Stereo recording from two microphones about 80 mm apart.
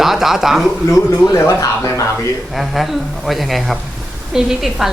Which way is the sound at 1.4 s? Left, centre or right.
Left.